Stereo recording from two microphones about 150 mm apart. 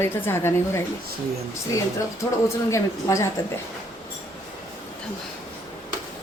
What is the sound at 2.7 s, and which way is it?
Speech, 20° left (ahead or behind).